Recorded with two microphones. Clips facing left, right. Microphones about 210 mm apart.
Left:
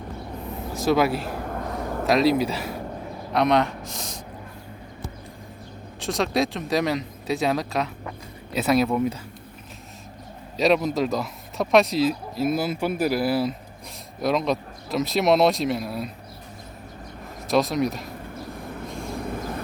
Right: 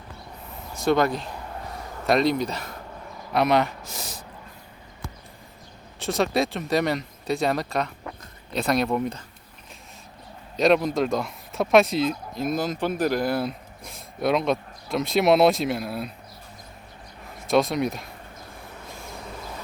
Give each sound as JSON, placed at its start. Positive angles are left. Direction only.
{"t": 0.7, "sound": "speech", "side_deg": 0}
{"t": 1.3, "sound": "a sound", "side_deg": 55}
{"t": 2.0, "sound": "speech", "side_deg": 0}
{"t": 6.0, "sound": "speech", "side_deg": 0}
{"t": 10.6, "sound": "speech", "side_deg": 0}
{"t": 17.5, "sound": "speech", "side_deg": 0}
{"t": 19.2, "sound": "vehicle", "side_deg": 55}